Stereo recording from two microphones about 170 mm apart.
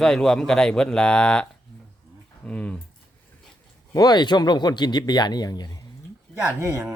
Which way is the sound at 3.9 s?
20° left (ahead or behind).